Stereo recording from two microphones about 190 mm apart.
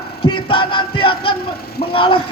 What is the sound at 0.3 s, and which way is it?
Music, 25° left (ahead or behind).